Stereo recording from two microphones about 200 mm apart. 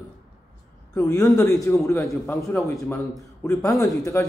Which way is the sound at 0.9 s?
15° left (ahead or behind).